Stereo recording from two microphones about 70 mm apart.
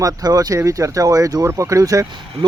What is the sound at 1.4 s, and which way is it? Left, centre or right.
Speech, right.